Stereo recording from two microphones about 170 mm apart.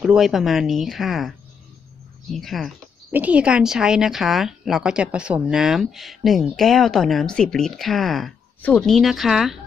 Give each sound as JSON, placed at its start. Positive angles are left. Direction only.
{"t": 0.0, "sound": "speech", "side_deg": 0}
{"t": 2.3, "sound": "speech", "side_deg": 0}